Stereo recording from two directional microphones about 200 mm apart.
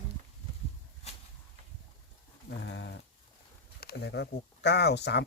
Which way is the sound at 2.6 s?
60° left (ahead or behind).